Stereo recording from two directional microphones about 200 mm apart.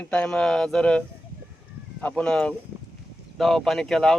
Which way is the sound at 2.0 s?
5° left (ahead or behind).